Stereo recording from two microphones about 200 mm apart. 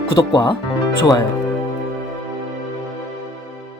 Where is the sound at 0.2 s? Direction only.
20° left (ahead or behind).